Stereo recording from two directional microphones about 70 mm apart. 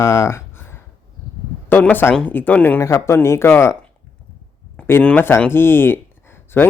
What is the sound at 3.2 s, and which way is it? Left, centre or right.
Speech, left.